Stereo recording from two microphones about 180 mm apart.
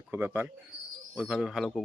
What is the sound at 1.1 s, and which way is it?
Speech, centre (ahead or behind).